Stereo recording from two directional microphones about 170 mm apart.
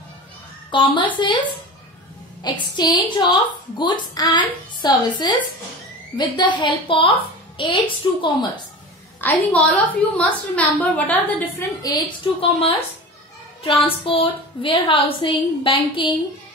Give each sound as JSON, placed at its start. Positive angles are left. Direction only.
{"t": 0.7, "sound": "a woman's voice", "side_deg": 30}
{"t": 2.7, "sound": "a woman's voice", "side_deg": 25}
{"t": 9.2, "sound": "a woman's voice", "side_deg": 10}
{"t": 12.4, "sound": "a woman's voice", "side_deg": 35}